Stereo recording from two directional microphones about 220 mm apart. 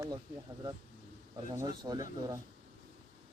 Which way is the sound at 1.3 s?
20° right (ahead or behind).